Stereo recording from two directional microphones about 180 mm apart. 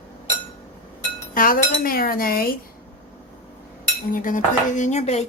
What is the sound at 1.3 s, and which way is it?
Cutlery, 50° left (ahead or behind).